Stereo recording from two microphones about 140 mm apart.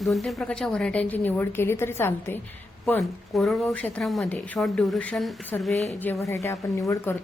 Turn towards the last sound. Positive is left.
turn(degrees=20)  # may be behind; listen again after turning